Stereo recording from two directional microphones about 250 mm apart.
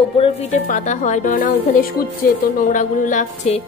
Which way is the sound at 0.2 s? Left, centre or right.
Left.